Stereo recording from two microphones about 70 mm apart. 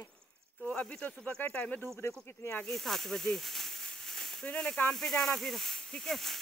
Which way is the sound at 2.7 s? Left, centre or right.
Centre.